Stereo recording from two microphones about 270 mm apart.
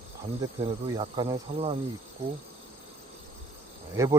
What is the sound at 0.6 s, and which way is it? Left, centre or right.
Speech, centre.